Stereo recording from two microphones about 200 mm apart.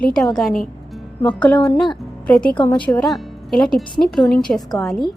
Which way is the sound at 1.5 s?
20° left (ahead or behind).